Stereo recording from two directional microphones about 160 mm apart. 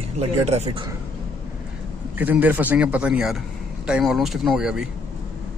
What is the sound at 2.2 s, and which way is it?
A man's voice, 10° right (ahead or behind).